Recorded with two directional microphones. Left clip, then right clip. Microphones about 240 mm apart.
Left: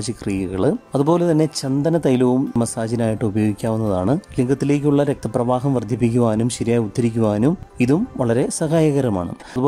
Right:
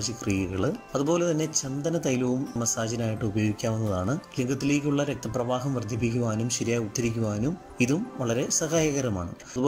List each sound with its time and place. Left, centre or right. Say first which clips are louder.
0.3 s speech: left 9 dB; centre